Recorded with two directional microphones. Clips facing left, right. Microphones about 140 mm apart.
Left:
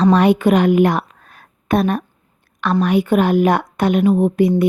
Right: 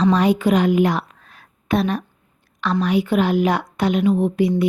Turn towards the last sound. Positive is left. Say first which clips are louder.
# left 4 dB
turn(degrees=50)  # may be behind; listen again after turning